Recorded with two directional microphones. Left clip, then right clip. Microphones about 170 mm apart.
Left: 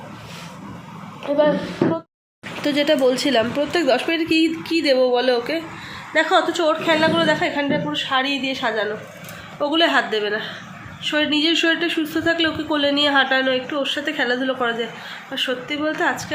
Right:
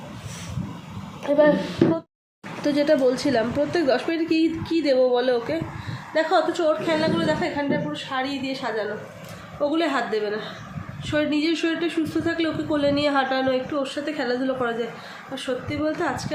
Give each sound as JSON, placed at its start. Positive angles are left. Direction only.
{"t": 1.3, "sound": "a woman's voice", "side_deg": -10}
{"t": 2.6, "sound": "speech", "side_deg": 5}
{"t": 6.1, "sound": "a woman's voice", "side_deg": 25}
{"t": 9.6, "sound": "a man's voice", "side_deg": 0}